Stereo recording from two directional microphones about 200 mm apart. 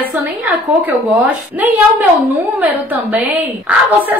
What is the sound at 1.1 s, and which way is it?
A woman's voice, 10° right (ahead or behind).